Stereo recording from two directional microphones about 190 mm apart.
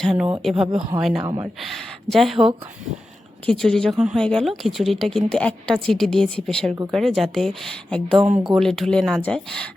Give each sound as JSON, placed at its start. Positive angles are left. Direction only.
{"t": 0.0, "sound": "speech", "side_deg": 0}
{"t": 1.2, "sound": "speech", "side_deg": -20}
{"t": 1.6, "sound": "speech", "side_deg": 0}